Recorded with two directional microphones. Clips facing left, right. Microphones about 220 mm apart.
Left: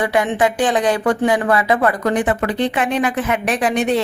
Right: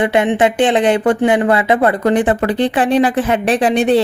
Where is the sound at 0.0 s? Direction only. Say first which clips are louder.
Right 4 dB; 25° right (ahead or behind).